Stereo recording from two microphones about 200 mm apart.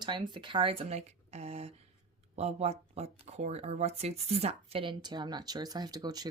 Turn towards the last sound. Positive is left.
turn(degrees=-20)  # may be behind; listen again after turning